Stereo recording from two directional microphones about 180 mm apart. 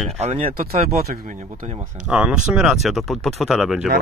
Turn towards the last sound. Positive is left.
turn(degrees=0)  # may be behind; listen again after turning